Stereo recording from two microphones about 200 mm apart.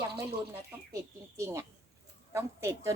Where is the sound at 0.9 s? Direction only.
15° right (ahead or behind).